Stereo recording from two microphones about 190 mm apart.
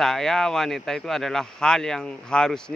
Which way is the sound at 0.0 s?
Centre (ahead or behind).